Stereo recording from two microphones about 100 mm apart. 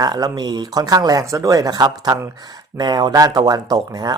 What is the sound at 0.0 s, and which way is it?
Speech, 40° right (ahead or behind).